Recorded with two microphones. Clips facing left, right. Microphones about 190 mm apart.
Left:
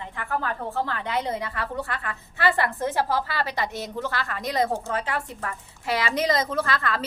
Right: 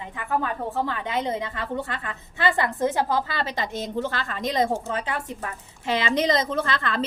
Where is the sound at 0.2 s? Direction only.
15° right (ahead or behind).